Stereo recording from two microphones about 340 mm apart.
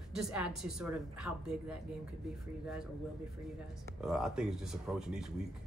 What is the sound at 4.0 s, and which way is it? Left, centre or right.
Speech, centre.